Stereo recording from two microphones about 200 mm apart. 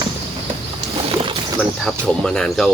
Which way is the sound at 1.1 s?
25° right (ahead or behind).